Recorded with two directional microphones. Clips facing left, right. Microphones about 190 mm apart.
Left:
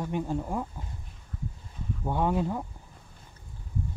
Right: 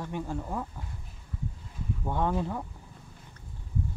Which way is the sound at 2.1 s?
10° left (ahead or behind).